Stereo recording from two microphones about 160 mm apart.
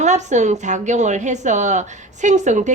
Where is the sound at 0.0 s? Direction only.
45° right (ahead or behind).